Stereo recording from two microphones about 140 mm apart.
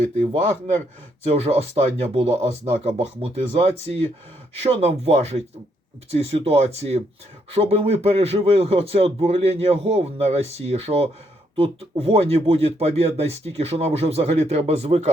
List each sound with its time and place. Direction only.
0.2 s speech: 50° right (ahead or behind)